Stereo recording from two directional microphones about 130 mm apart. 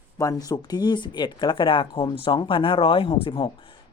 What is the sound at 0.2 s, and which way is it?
Speech, 25° left (ahead or behind).